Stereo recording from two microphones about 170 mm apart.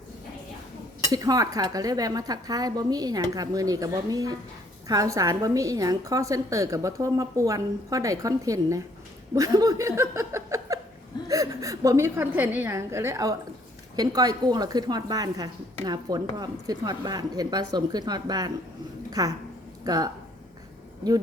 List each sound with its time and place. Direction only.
1.1 s a woman's voice: 20° right (ahead or behind)
19.8 s speech: 20° right (ahead or behind)